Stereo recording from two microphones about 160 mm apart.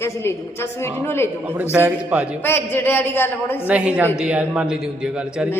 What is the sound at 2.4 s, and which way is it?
A woman's voice, 15° left (ahead or behind).